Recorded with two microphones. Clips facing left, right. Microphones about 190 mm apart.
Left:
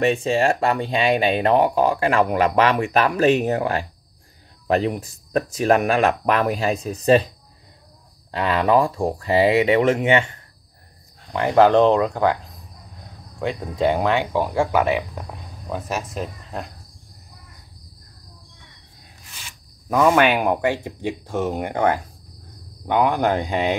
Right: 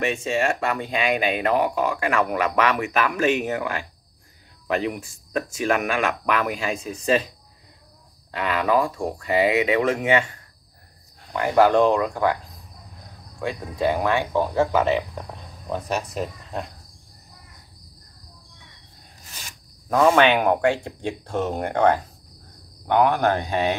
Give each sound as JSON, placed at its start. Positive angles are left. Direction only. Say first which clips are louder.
{"t": 0.0, "sound": "speech", "louder": "left 4 dB", "side_deg": 35}
{"t": 8.3, "sound": "speech", "louder": "left 3 dB", "side_deg": 30}
{"t": 11.3, "sound": "speech", "louder": "left 2 dB", "side_deg": 25}
{"t": 13.4, "sound": "speech", "louder": "left 3 dB", "side_deg": 25}
{"t": 19.9, "sound": "speech", "louder": "even", "side_deg": 5}